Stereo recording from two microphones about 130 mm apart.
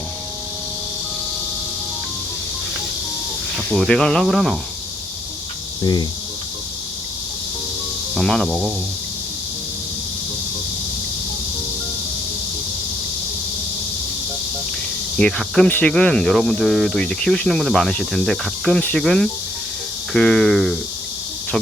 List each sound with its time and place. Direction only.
3.6 s speech: 5° left (ahead or behind)
5.8 s cricket: 35° left (ahead or behind)
8.1 s speech: 5° left (ahead or behind)
15.2 s speech: 5° left (ahead or behind)